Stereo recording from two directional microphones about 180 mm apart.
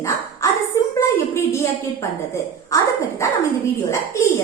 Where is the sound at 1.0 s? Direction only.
15° left (ahead or behind).